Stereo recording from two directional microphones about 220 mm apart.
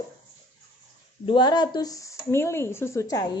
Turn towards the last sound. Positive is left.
turn(degrees=15)  # may be behind; listen again after turning